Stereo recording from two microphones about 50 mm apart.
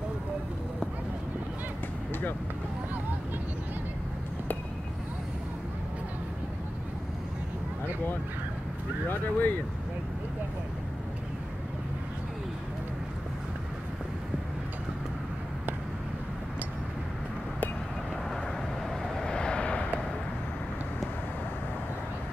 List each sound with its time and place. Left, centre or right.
9.1 s speech: left
19.1 s vehicle: centre